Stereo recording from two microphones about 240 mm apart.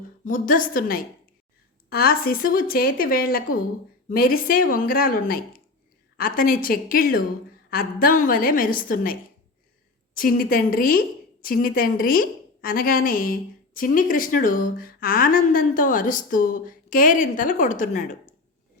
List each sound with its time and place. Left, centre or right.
0.3 s a woman's voice: left
10.2 s a woman's voice: left